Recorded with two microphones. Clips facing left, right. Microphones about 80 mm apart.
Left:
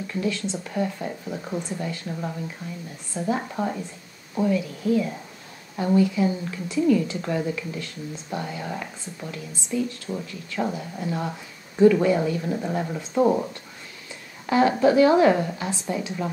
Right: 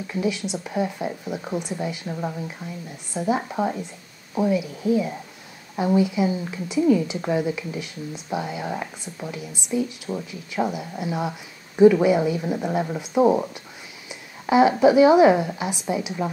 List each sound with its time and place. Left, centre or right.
0.0 s speech: centre
14.4 s a sound: centre
14.8 s speech: centre